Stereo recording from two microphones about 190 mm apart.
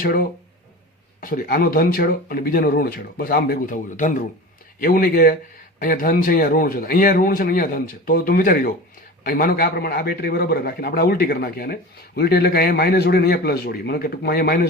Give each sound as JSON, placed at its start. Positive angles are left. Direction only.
{"t": 0.0, "sound": "a man's voice", "side_deg": 50}